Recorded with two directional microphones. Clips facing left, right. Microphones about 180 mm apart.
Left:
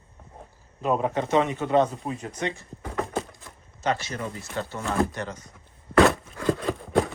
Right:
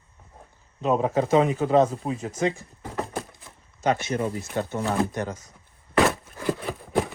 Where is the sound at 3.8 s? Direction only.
20° right (ahead or behind).